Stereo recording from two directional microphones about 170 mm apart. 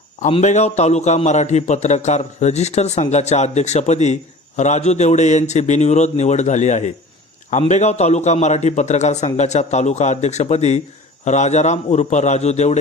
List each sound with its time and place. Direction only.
0.2 s a man's voice: 40° left (ahead or behind)